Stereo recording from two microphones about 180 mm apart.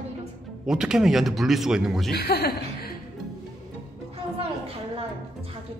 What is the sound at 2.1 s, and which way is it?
Speech, 60° left (ahead or behind).